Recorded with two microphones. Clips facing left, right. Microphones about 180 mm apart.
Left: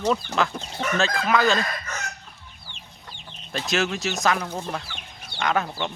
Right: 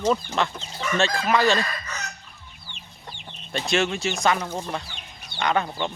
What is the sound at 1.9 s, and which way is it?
Chicken, 50° left (ahead or behind).